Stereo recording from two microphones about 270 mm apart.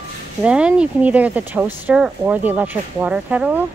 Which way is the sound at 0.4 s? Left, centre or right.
Centre.